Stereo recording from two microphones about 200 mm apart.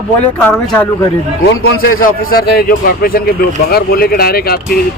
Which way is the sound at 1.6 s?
50° left (ahead or behind).